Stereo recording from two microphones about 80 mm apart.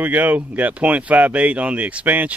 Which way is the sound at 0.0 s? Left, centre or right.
Right.